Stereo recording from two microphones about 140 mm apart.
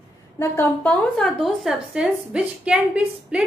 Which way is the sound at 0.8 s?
5° left (ahead or behind).